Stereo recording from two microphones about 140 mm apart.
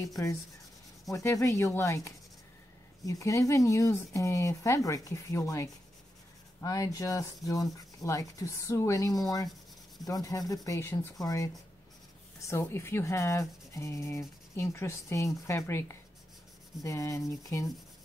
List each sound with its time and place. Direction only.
1.1 s speech: 20° left (ahead or behind)